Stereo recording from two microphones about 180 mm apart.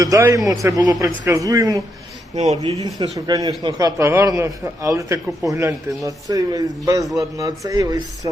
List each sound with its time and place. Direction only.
0.0 s speech: 20° right (ahead or behind)
2.3 s speech: 40° right (ahead or behind)
2.8 s speech: 20° right (ahead or behind)